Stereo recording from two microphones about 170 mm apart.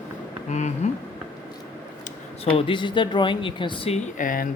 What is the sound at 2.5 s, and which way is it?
Speech, 30° left (ahead or behind).